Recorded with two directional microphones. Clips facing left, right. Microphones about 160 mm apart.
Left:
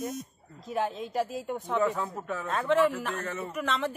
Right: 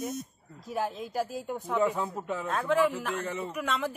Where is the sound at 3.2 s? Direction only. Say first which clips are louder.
Right 1 dB; 15° right (ahead or behind).